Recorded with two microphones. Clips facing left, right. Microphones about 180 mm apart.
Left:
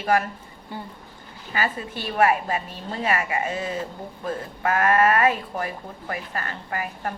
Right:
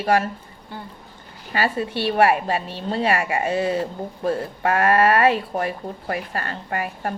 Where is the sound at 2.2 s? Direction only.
35° right (ahead or behind).